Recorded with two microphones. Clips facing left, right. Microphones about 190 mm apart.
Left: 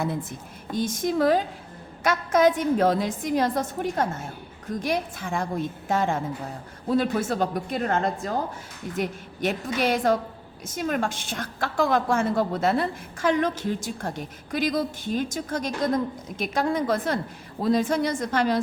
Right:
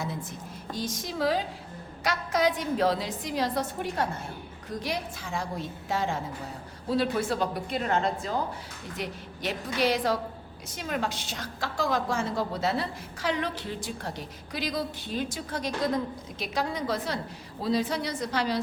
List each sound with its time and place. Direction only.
0.0 s a woman's voice: 55° left (ahead or behind)